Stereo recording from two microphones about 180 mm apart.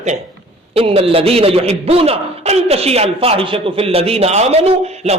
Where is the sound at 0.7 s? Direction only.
30° right (ahead or behind).